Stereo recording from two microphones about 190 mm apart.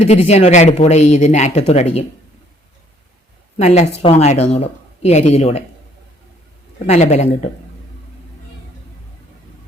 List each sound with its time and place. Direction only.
0.0 s speech: 35° left (ahead or behind)
3.6 s speech: 35° left (ahead or behind)
6.8 s speech: 35° left (ahead or behind)